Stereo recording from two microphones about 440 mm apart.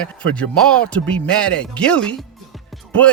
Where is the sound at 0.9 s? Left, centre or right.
Centre.